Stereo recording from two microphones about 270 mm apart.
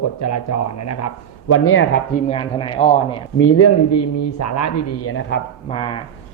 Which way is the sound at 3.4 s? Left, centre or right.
Left.